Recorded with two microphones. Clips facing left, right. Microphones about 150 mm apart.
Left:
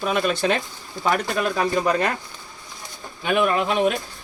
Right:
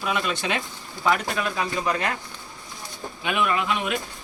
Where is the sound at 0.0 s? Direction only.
40° left (ahead or behind).